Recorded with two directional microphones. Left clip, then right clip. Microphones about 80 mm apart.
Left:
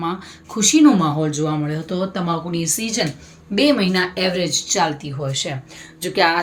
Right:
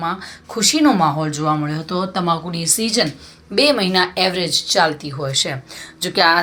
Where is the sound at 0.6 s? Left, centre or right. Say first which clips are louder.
Even; right.